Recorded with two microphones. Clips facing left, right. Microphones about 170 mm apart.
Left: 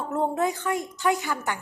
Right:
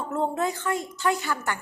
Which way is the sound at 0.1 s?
10° left (ahead or behind).